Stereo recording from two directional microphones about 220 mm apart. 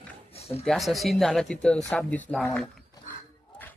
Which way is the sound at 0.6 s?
Centre (ahead or behind).